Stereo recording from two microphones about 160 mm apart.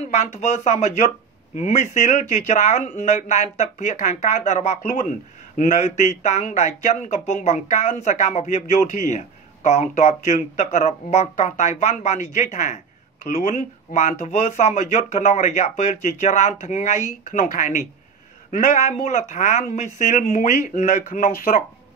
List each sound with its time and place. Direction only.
0.1 s speech: 45° left (ahead or behind)